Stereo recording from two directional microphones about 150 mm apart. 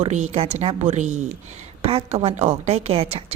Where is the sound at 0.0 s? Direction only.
50° right (ahead or behind).